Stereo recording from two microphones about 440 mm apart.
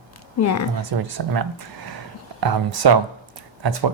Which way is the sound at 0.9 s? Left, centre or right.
Right.